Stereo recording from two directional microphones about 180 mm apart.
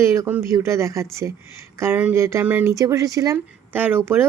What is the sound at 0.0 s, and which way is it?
Speech, 15° right (ahead or behind).